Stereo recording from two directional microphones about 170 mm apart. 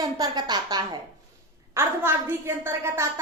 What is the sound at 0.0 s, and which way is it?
A woman's voice, 25° right (ahead or behind).